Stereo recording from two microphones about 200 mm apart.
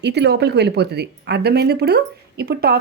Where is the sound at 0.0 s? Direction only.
55° right (ahead or behind).